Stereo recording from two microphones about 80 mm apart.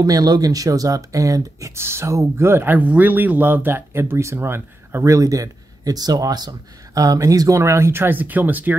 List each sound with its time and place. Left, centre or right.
0.0 s speech: right
5.0 s speech: right